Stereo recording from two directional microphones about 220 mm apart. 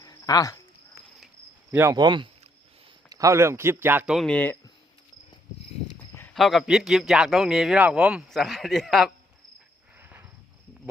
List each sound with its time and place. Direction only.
0.0 s a sound: 15° left (ahead or behind)
1.7 s speech: 15° right (ahead or behind); by 4.5 s 5° left (ahead or behind)
6.1 s a man's voice: 5° left (ahead or behind)
10.0 s cricket: 10° right (ahead or behind)